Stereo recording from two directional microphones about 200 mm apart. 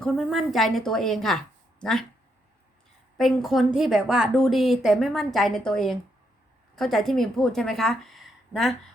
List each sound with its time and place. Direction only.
0.0 s a woman's voice: 5° left (ahead or behind)
3.2 s a woman's voice: centre (ahead or behind)